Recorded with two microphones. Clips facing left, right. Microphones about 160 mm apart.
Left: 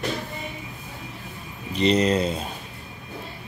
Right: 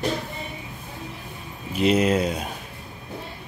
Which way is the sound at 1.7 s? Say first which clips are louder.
Even; 5° right (ahead or behind).